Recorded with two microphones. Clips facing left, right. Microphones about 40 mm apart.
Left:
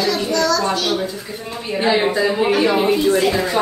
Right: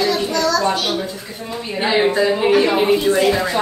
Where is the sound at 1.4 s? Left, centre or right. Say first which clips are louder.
Even; centre.